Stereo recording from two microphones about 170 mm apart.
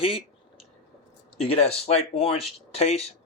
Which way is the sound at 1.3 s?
35° left (ahead or behind).